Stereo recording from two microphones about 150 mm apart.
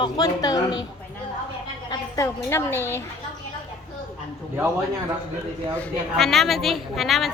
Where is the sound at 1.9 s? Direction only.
20° left (ahead or behind).